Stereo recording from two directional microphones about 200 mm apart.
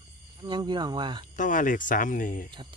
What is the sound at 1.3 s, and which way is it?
Speech, 40° left (ahead or behind).